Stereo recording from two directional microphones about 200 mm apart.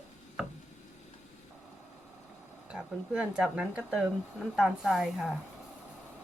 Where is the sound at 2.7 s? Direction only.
5° right (ahead or behind).